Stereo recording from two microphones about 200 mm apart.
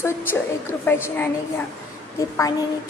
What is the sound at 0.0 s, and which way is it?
A woman's voice, 10° left (ahead or behind).